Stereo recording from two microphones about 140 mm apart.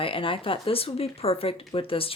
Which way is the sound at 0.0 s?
40° left (ahead or behind).